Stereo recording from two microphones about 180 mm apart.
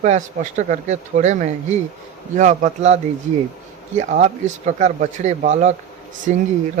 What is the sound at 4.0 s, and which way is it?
A man's voice, 45° right (ahead or behind).